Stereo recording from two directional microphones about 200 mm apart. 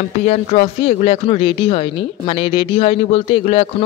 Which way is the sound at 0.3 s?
35° left (ahead or behind).